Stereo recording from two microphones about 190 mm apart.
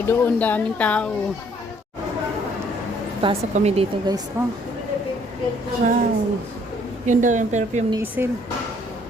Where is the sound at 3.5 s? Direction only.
35° right (ahead or behind).